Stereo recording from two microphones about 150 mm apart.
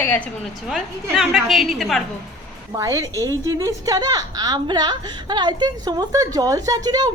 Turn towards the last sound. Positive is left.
turn(degrees=-25)  # may be behind; listen again after turning